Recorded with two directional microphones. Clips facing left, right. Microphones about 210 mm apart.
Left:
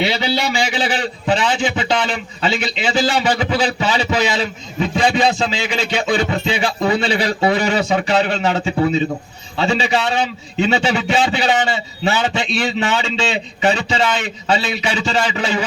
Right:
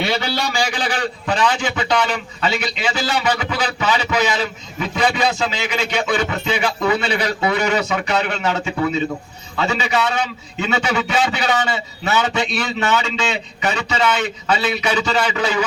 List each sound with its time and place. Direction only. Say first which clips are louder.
1.3 s a man's voice: left 2 dB; 25° left (ahead or behind)